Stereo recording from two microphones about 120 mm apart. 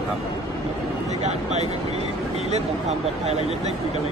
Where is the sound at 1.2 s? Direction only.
65° right (ahead or behind).